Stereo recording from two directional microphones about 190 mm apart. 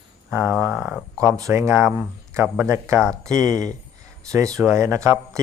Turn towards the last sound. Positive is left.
turn(degrees=-15)  # may be behind; listen again after turning